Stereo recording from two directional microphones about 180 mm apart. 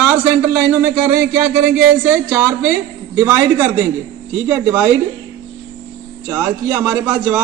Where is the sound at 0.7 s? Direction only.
10° right (ahead or behind).